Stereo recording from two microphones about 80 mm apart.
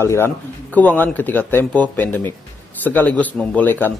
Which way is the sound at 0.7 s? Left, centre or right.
Centre.